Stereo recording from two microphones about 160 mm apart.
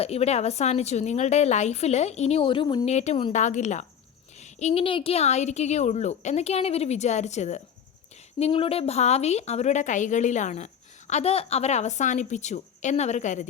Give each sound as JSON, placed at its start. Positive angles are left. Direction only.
{"t": 0.0, "sound": "a woman's voice", "side_deg": 40}
{"t": 2.8, "sound": "a woman's voice", "side_deg": 45}